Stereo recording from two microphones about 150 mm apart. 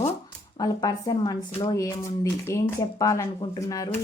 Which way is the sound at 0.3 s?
25° left (ahead or behind).